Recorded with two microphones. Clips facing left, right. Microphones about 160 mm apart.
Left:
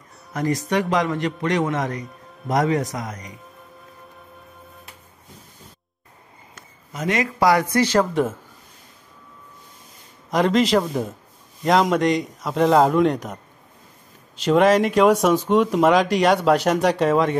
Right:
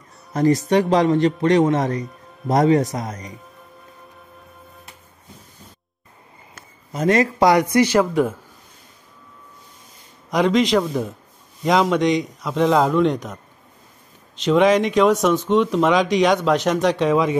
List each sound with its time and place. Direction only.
0.3 s speech: 30° right (ahead or behind)
6.9 s speech: 35° right (ahead or behind)
7.3 s speech: 20° right (ahead or behind); by 8.4 s centre (ahead or behind)
10.3 s speech: centre (ahead or behind)
14.4 s speech: 5° left (ahead or behind)